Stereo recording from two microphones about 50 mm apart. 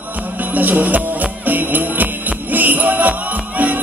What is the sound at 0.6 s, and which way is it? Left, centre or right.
Music, right.